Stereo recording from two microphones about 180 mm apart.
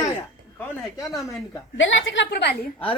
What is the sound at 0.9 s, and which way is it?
Speech, 20° left (ahead or behind).